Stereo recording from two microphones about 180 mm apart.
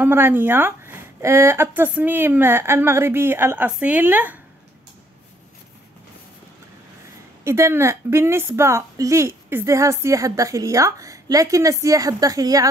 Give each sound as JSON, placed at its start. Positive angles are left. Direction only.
{"t": 0.0, "sound": "a woman's voice", "side_deg": -10}
{"t": 7.4, "sound": "a woman's voice", "side_deg": -15}